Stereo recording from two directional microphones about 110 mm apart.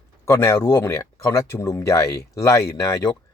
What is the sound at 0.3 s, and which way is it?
Speech, 25° left (ahead or behind).